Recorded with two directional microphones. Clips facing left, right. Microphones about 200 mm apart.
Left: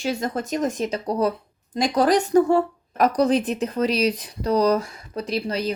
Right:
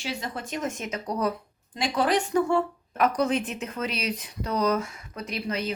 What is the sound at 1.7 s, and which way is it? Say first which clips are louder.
A woman's voice: left 6 dB; 40° left (ahead or behind).